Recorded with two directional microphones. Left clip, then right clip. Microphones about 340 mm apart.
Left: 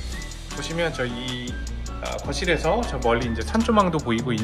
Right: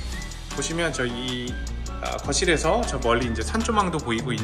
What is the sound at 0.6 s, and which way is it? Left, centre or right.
Speech, centre.